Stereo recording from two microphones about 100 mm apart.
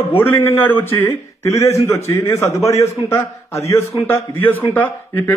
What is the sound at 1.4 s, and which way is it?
A man's voice, 30° left (ahead or behind).